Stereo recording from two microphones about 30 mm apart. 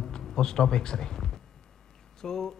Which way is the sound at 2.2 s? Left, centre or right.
Centre.